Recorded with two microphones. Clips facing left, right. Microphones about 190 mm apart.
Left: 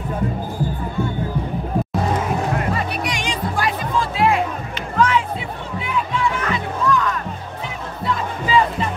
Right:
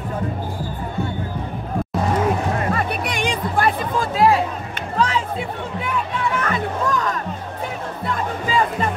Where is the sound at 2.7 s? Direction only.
55° right (ahead or behind).